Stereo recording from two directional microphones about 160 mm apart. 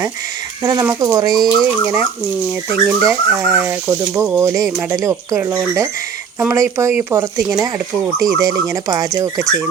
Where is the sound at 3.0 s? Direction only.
15° right (ahead or behind).